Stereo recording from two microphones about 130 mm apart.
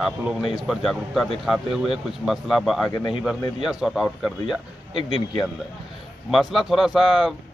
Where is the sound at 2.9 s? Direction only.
35° left (ahead or behind).